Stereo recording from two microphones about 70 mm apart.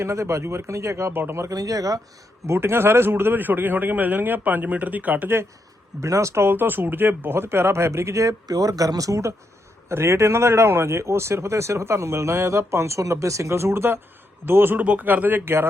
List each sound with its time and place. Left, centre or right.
0.0 s speech: right
1.1 s a man's voice: right
1.4 s speech: right
2.5 s a man's voice: right
6.0 s speech: right
9.9 s a man's voice: right